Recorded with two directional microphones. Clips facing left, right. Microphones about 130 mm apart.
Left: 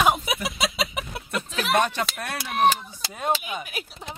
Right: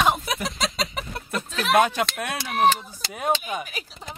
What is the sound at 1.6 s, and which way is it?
Speech, centre (ahead or behind).